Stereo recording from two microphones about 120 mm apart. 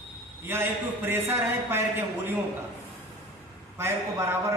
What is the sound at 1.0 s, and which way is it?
A man's voice, 20° right (ahead or behind).